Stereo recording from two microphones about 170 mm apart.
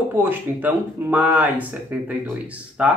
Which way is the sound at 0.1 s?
10° right (ahead or behind).